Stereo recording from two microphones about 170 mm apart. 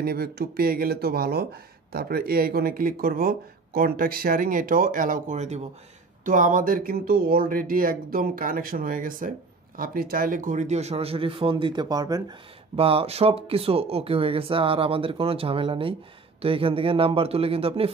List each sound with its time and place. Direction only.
0.0 s speech: 60° right (ahead or behind); by 5.7 s 40° right (ahead or behind)
6.2 s speech: 50° right (ahead or behind); by 12.4 s 25° right (ahead or behind)
12.7 s speech: 35° right (ahead or behind)